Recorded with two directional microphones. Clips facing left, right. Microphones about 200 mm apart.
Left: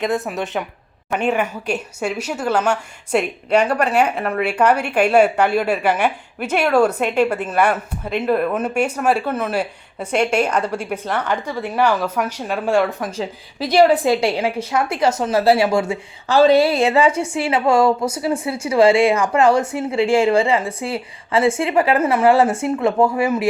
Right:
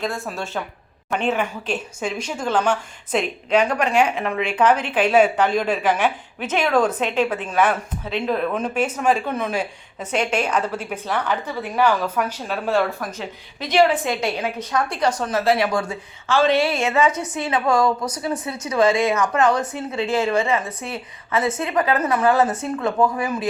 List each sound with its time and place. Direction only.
0.0 s speech: 20° left (ahead or behind)
13.1 s a woman's voice: 30° left (ahead or behind)
16.2 s a woman's voice: 35° left (ahead or behind)